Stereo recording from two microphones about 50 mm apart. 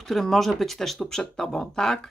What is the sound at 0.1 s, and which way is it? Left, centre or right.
Speech, centre.